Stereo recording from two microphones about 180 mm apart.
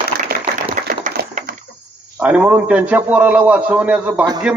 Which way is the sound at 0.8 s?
50° right (ahead or behind).